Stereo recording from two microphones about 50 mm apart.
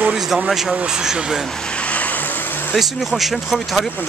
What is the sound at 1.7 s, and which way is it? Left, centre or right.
Vehicle, left.